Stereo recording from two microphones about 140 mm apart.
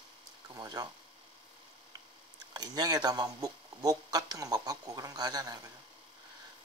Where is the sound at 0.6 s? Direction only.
25° right (ahead or behind).